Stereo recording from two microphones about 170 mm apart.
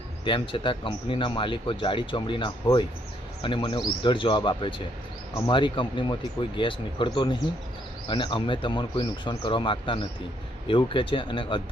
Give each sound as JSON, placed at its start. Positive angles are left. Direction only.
{"t": 0.3, "sound": "speech", "side_deg": 30}